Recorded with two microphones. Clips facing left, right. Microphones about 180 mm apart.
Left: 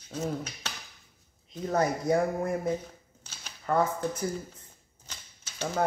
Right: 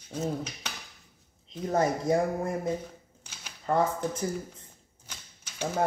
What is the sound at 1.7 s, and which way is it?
Speech, 25° right (ahead or behind).